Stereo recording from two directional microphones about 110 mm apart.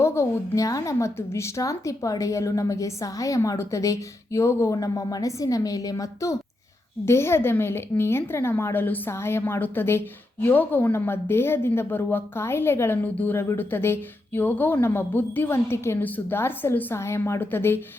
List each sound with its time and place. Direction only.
0.0 s a woman's voice: 25° left (ahead or behind)